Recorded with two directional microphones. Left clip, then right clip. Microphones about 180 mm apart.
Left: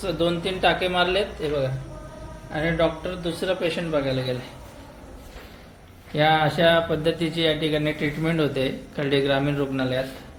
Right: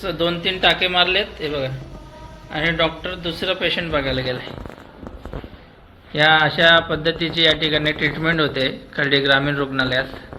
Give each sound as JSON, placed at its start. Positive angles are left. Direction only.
{"t": 0.0, "sound": "a man's voice", "side_deg": 15}
{"t": 6.1, "sound": "a man's voice", "side_deg": 25}